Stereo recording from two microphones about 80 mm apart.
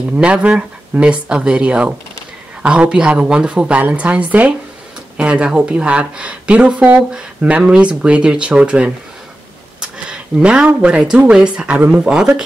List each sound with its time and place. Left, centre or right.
0.2 s speech: centre
9.8 s a sound: centre
10.7 s speech: centre